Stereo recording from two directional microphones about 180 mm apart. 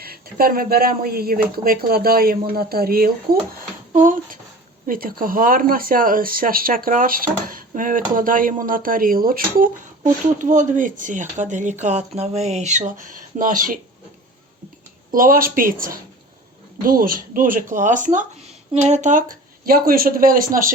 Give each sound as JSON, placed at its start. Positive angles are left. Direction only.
{"t": 0.0, "sound": "speech", "side_deg": -55}
{"t": 15.1, "sound": "speech", "side_deg": -50}